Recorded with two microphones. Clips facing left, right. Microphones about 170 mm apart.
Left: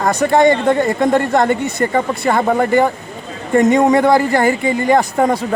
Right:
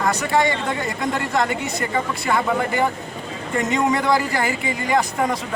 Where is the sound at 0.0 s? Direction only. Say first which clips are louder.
Left 7 dB; 55° left (ahead or behind).